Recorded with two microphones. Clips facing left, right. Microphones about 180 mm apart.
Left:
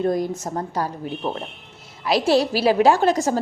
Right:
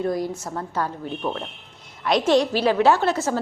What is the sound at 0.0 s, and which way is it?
A woman's voice, 20° left (ahead or behind).